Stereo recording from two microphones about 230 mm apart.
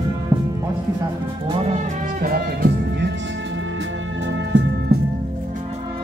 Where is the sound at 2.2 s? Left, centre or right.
Right.